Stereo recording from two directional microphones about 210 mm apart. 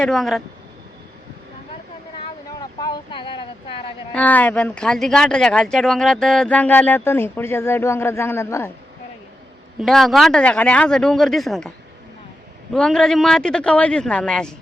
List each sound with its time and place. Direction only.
0.0 s speech: centre (ahead or behind)
2.8 s speech: 20° left (ahead or behind)
4.1 s speech: 5° left (ahead or behind)
9.8 s speech: centre (ahead or behind)
12.7 s speech: 5° left (ahead or behind)